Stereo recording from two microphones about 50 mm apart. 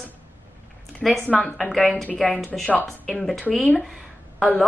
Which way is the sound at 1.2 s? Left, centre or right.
Left.